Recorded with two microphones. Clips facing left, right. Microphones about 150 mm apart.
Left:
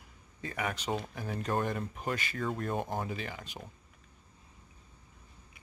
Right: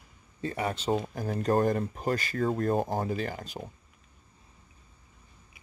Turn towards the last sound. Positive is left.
turn(degrees=-35)  # may be behind; listen again after turning